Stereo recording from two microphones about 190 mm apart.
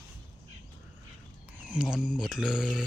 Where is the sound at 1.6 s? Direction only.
5° right (ahead or behind).